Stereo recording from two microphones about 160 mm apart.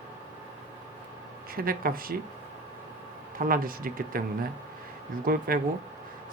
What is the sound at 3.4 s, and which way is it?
Speech, 60° right (ahead or behind).